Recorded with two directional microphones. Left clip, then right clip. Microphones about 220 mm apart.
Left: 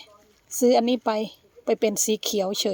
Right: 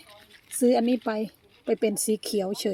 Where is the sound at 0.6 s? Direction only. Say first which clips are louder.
Left 3 dB; 15° left (ahead or behind).